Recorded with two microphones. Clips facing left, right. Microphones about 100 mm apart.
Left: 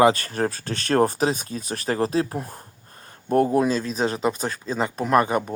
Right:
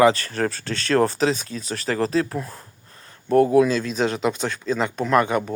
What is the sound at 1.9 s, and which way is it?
Speech, 25° left (ahead or behind).